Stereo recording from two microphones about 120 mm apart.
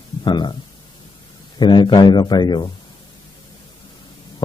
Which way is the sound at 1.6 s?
40° left (ahead or behind).